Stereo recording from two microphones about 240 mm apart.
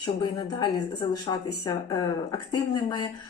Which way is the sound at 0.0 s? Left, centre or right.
Centre.